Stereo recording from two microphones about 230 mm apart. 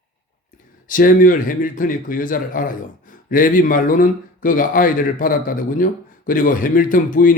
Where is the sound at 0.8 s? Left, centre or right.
Left.